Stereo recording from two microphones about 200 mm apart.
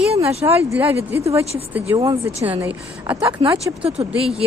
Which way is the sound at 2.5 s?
10° right (ahead or behind).